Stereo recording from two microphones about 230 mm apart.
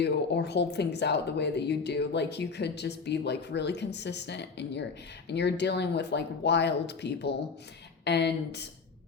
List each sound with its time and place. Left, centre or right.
0.0 s speech: left